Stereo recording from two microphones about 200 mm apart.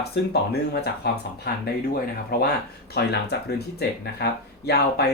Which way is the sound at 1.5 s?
50° left (ahead or behind).